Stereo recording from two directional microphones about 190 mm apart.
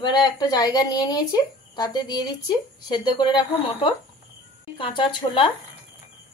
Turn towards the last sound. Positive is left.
turn(degrees=25)  # may be behind; listen again after turning